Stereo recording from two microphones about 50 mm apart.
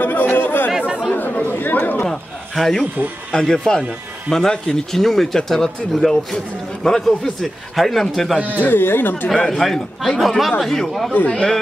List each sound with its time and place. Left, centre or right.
0.0 s chatter: left
0.7 s chatter: centre
1.1 s chatter: left
2.0 s a sound: centre
3.3 s a man's voice: centre
8.5 s speech: left
9.5 s a man's voice: centre
11.2 s a man's voice: centre